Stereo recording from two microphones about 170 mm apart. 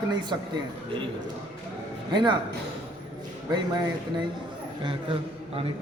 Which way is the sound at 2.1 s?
25° right (ahead or behind).